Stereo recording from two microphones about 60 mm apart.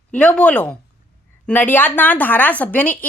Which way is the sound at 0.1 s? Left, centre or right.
Left.